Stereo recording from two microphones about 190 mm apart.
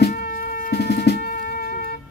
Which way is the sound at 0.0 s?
50° left (ahead or behind).